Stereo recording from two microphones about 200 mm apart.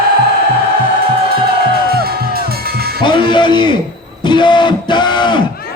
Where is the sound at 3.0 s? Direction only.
25° left (ahead or behind).